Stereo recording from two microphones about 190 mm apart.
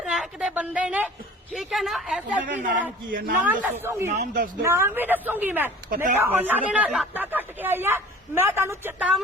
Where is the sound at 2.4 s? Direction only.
45° right (ahead or behind).